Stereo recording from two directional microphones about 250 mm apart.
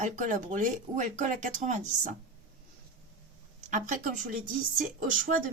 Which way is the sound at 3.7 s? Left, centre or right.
Right.